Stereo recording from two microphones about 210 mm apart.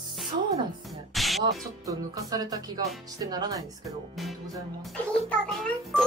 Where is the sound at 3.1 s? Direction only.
20° right (ahead or behind).